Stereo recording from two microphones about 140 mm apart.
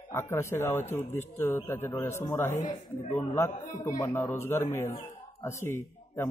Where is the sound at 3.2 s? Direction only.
15° left (ahead or behind).